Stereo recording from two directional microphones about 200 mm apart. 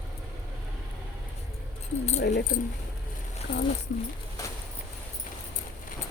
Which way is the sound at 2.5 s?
40° left (ahead or behind).